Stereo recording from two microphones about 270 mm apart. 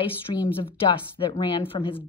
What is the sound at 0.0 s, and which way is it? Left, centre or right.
A woman's voice, centre.